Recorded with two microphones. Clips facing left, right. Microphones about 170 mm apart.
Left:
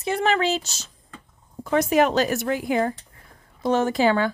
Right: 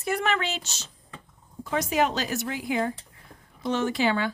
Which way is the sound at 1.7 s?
55° left (ahead or behind).